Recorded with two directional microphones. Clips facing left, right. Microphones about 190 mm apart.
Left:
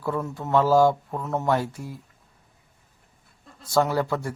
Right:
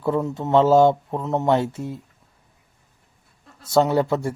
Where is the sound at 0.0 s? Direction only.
20° right (ahead or behind).